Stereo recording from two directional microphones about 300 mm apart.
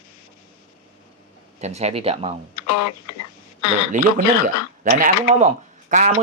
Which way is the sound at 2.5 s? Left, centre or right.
Left.